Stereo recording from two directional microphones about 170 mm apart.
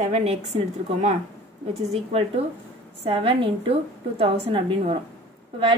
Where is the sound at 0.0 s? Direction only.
40° right (ahead or behind).